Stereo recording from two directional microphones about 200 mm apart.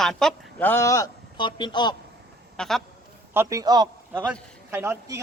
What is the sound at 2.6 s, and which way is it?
Speech, centre (ahead or behind).